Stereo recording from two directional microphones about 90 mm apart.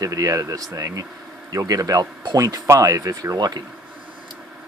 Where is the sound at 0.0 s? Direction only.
40° right (ahead or behind).